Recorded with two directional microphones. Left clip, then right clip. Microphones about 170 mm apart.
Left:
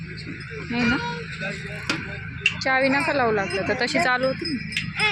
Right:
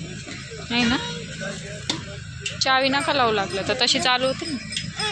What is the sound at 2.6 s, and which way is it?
Speech, 15° left (ahead or behind).